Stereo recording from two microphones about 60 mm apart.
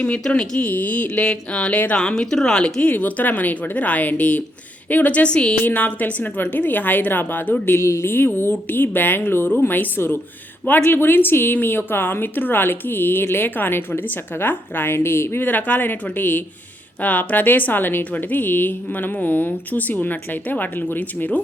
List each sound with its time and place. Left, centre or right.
0.0 s a woman's voice: left
1.2 s speech: centre
1.7 s a woman's voice: left
2.0 s speech: centre
2.9 s a woman's voice: left
7.7 s a woman's voice: left